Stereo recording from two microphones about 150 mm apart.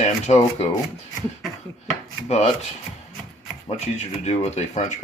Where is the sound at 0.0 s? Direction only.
50° left (ahead or behind).